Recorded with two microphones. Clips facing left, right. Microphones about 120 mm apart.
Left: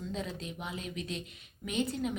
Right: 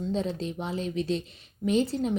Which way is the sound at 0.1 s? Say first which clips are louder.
Right 10 dB; 30° right (ahead or behind).